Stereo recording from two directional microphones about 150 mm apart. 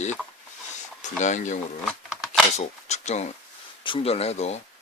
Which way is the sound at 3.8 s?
35° left (ahead or behind).